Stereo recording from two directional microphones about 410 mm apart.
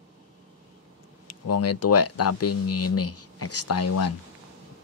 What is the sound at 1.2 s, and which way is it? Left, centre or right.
Speech, left.